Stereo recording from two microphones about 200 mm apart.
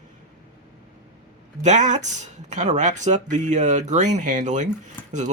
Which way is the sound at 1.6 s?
35° right (ahead or behind).